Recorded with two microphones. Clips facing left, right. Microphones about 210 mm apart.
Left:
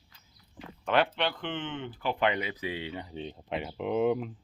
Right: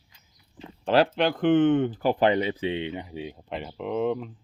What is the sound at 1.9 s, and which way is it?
Speech, 40° right (ahead or behind).